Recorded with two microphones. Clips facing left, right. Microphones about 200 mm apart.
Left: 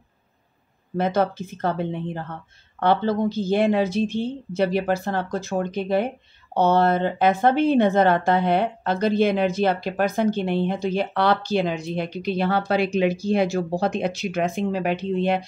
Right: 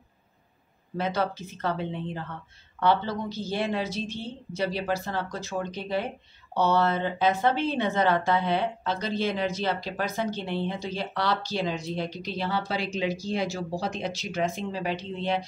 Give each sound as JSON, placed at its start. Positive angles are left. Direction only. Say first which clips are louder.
{"t": 0.9, "sound": "speech", "louder": "left 6 dB", "side_deg": 50}